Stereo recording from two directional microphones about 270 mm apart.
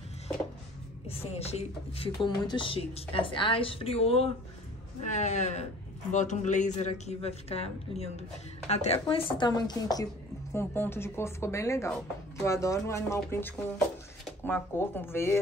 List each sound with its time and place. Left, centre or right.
1.0 s speech: left